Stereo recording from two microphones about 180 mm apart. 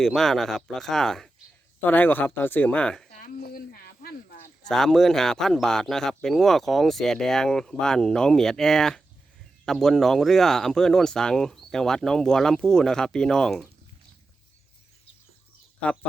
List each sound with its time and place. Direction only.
0.0 s speech: centre (ahead or behind)
3.2 s a sound: 50° left (ahead or behind)
4.7 s speech: 5° left (ahead or behind)
15.8 s speech: 5° left (ahead or behind)